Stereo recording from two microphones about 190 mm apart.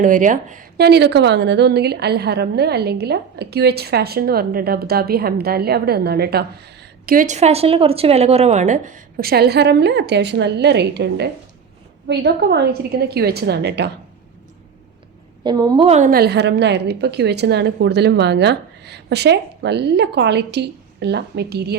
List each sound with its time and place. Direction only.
0.0 s speech: 45° right (ahead or behind)
0.8 s a woman's voice: 60° right (ahead or behind)
7.0 s a woman's voice: 45° right (ahead or behind)
15.4 s a woman's voice: 20° right (ahead or behind)
15.9 s a woman's voice: 45° right (ahead or behind)